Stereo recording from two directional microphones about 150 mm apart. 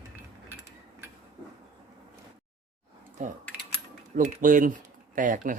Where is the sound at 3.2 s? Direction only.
60° right (ahead or behind).